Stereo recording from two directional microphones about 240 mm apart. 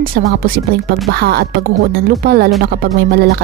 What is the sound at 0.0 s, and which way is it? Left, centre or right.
A woman's voice, right.